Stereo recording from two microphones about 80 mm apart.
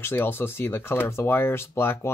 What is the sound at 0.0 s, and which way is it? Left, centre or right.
Speech, left.